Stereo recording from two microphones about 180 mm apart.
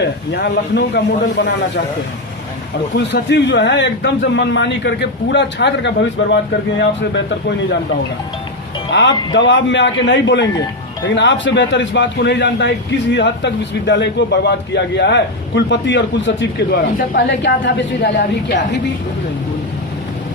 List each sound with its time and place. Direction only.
0.3 s speech: 65° left (ahead or behind)
2.9 s a man's voice: 70° left (ahead or behind)
8.9 s speech: 80° left
11.1 s a man's voice: 90° left; by 18.5 s 70° left (ahead or behind)